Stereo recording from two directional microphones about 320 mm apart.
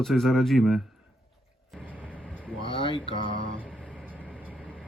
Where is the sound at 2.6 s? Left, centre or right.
Centre.